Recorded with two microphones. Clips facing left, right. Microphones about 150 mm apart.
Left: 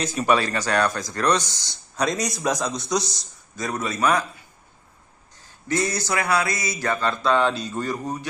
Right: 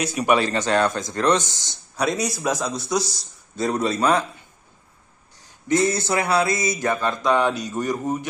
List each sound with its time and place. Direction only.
0.0 s a man's voice: 15° right (ahead or behind)
1.4 s speech: 15° left (ahead or behind)
1.7 s speech: 10° right (ahead or behind)
3.5 s a man's voice: 30° right (ahead or behind)
5.4 s speech: 20° right (ahead or behind)